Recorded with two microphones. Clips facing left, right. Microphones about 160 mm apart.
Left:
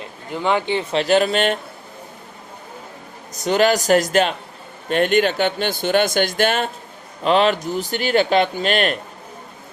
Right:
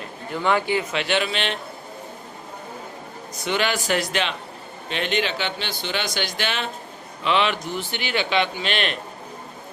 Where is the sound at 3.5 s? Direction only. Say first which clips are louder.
Left 8 dB; 40° left (ahead or behind).